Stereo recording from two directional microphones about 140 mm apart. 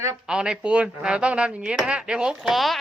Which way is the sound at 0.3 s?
5° right (ahead or behind).